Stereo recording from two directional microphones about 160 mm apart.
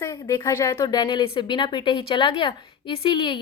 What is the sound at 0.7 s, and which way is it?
A woman's voice, 25° left (ahead or behind).